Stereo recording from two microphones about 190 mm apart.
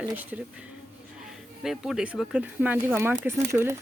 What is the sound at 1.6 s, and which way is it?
Speech, centre (ahead or behind).